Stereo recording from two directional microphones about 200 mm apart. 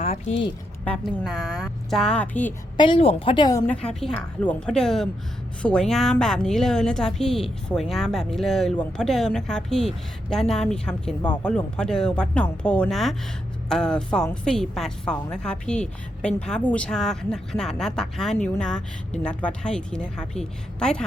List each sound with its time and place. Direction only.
0.9 s speech: centre (ahead or behind)
2.7 s a woman's voice: 25° left (ahead or behind)
3.7 s speech: 5° left (ahead or behind)